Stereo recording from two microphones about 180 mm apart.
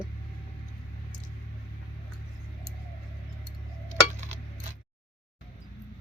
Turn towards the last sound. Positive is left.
turn(degrees=-40)  # may be behind; listen again after turning